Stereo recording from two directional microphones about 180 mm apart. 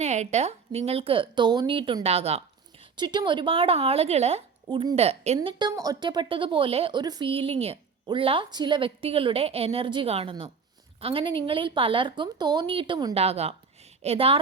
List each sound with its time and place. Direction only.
0.0 s a woman's voice: 40° right (ahead or behind)
13.1 s a woman's voice: 35° right (ahead or behind)